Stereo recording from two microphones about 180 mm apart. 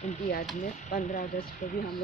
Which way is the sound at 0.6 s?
45° left (ahead or behind).